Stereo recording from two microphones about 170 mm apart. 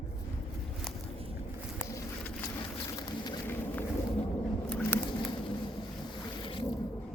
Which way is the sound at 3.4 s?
10° left (ahead or behind).